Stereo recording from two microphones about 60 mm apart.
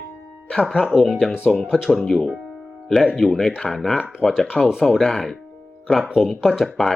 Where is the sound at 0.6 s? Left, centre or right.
Centre.